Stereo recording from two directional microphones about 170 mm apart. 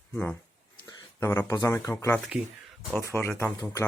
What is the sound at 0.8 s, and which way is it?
Speech, 20° left (ahead or behind).